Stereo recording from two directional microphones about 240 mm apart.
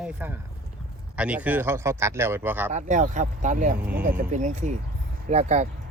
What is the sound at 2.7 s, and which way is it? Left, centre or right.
Speech, right.